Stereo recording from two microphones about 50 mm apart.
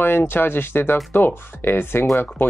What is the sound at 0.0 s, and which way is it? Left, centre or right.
Speech, left.